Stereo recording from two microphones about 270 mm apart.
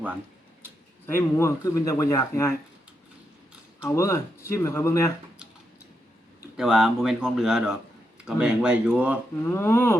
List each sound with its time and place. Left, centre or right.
1.0 s speech: centre
3.8 s speech: centre
6.6 s speech: centre
9.5 s speech: centre